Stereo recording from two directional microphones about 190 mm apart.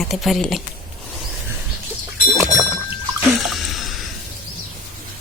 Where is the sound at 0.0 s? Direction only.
Centre (ahead or behind).